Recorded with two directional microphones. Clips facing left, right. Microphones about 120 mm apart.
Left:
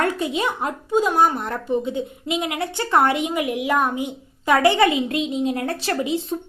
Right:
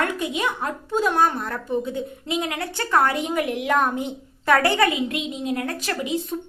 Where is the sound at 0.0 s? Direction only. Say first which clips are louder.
Left 2 dB; 30° left (ahead or behind).